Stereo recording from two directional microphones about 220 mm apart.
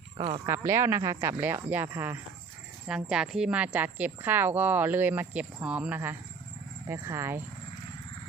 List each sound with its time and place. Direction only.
0.2 s speech: 25° right (ahead or behind)
0.4 s a woman's voice: 10° right (ahead or behind)